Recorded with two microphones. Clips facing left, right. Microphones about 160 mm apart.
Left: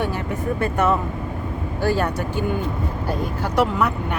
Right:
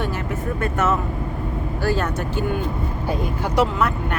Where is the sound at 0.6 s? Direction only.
15° left (ahead or behind).